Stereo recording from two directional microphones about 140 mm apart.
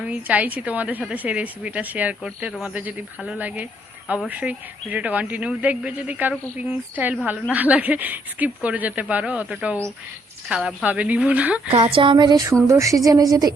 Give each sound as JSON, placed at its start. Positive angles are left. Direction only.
{"t": 0.0, "sound": "a woman's voice", "side_deg": -10}
{"t": 11.9, "sound": "a woman's voice", "side_deg": -35}